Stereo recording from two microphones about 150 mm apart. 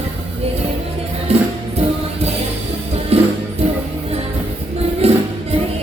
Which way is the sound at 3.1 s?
45° right (ahead or behind).